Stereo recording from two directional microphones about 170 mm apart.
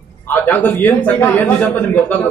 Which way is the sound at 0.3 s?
10° left (ahead or behind).